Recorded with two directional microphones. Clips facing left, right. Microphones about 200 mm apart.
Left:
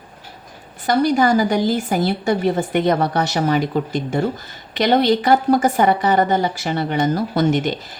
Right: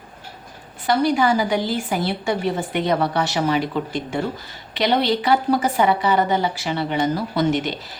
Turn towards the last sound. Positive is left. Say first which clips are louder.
# left 3 dB
turn(degrees=45)  # may be behind; listen again after turning